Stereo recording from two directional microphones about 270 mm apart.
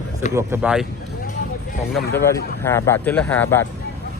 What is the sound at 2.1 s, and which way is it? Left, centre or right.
Speech, centre.